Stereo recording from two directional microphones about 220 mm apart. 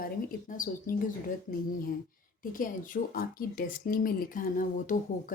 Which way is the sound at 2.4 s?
40° left (ahead or behind).